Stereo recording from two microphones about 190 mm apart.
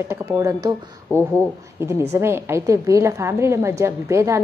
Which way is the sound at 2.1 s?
15° right (ahead or behind).